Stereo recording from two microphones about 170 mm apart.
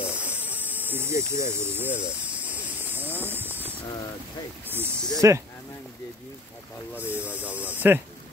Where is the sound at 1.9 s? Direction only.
10° right (ahead or behind).